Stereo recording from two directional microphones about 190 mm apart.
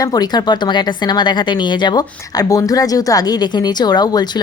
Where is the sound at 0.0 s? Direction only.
20° left (ahead or behind).